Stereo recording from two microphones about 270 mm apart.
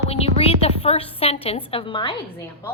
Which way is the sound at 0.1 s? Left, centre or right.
Left.